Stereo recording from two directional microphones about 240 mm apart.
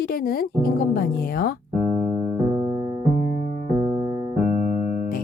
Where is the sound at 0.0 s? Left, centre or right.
Left.